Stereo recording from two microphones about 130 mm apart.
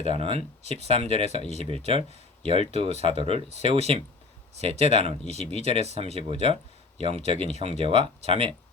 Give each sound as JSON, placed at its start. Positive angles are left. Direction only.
{"t": 0.0, "sound": "speech", "side_deg": -50}